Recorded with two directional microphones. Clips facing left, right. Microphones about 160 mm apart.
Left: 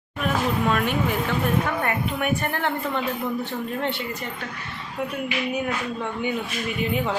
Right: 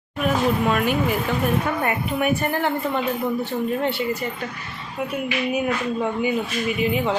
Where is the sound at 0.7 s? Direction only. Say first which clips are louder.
Right 2 dB; 5° right (ahead or behind).